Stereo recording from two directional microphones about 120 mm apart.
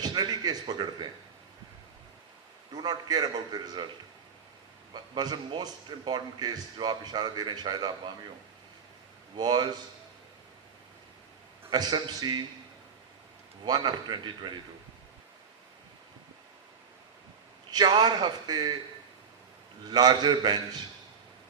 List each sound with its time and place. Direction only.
0.0 s a sound: 35° right (ahead or behind)
2.7 s a man's voice: 35° right (ahead or behind)
5.1 s a man's voice: 35° right (ahead or behind)
9.3 s a man's voice: 35° right (ahead or behind)
11.7 s a man's voice: 35° right (ahead or behind)
13.7 s a man's voice: 35° right (ahead or behind)
17.7 s a man's voice: 35° right (ahead or behind)
19.9 s a man's voice: 35° right (ahead or behind)